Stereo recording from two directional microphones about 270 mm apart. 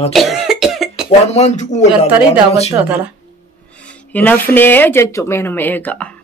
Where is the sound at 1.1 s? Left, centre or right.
Left.